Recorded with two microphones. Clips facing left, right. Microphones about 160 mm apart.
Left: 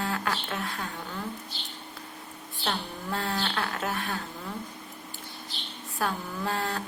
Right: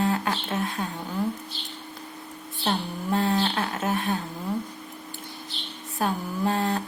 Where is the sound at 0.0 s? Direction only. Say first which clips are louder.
Right 5 dB; 20° right (ahead or behind).